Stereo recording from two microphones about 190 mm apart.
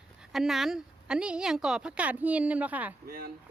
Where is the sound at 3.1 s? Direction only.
50° right (ahead or behind).